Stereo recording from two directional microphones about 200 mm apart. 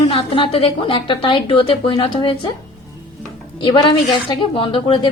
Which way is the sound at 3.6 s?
25° left (ahead or behind).